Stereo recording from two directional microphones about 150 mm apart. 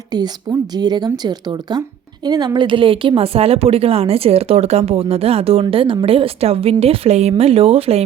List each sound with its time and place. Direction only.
0.8 s a woman's voice: 25° right (ahead or behind)